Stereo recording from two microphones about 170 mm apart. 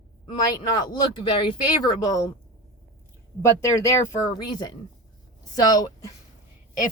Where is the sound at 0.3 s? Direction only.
25° left (ahead or behind).